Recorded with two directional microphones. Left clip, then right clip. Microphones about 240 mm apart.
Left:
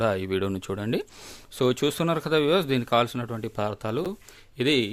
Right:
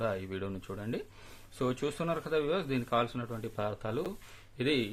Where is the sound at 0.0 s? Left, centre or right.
Left.